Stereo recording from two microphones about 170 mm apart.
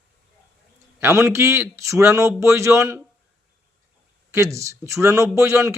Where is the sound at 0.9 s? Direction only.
15° right (ahead or behind).